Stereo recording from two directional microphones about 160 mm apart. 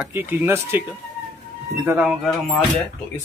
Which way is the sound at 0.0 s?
15° right (ahead or behind).